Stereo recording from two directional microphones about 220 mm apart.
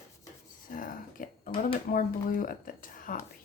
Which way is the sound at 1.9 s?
40° left (ahead or behind).